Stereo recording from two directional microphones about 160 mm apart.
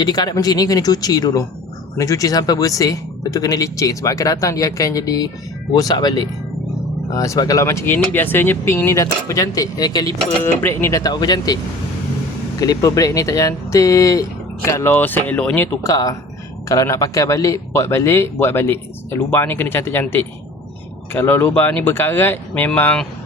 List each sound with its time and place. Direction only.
0.0 s speech: 25° left (ahead or behind)
10.4 s speech: 15° left (ahead or behind)